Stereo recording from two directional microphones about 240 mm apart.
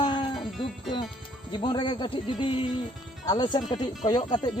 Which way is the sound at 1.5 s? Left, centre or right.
Centre.